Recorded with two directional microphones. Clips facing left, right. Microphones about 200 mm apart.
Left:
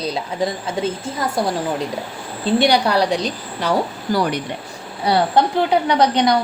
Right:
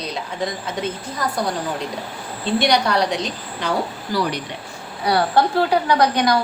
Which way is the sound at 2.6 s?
30° left (ahead or behind).